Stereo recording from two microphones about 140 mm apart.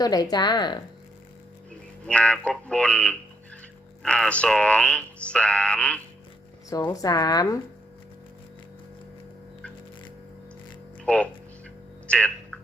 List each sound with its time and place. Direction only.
0.0 s speech: 25° left (ahead or behind)
2.0 s speech: 10° left (ahead or behind)
6.7 s speech: 25° left (ahead or behind)
11.0 s speech: 10° left (ahead or behind)